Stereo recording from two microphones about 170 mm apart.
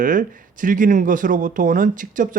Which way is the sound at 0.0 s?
50° right (ahead or behind).